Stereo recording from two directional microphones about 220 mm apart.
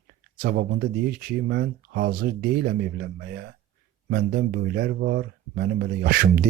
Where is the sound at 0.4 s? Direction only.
45° right (ahead or behind).